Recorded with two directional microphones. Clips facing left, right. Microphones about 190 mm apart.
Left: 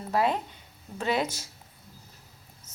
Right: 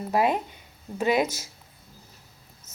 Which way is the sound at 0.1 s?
15° right (ahead or behind).